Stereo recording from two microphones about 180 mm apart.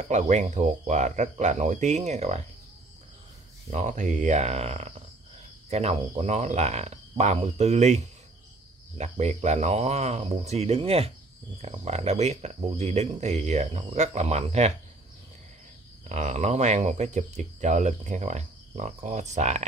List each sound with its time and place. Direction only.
0.1 s speech: 40° right (ahead or behind)
3.7 s speech: 45° right (ahead or behind)
16.1 s speech: 40° right (ahead or behind)